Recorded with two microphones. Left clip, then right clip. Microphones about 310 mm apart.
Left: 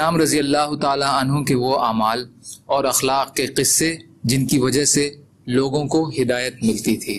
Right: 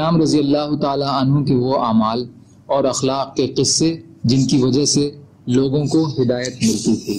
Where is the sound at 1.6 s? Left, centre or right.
Left.